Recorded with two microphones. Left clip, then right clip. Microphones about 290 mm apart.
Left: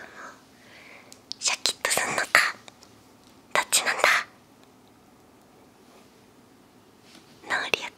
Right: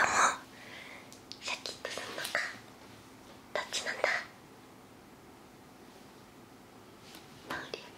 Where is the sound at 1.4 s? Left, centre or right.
Left.